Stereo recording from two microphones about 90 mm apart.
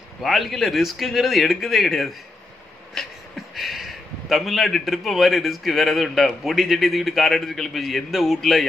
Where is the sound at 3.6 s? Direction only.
Centre (ahead or behind).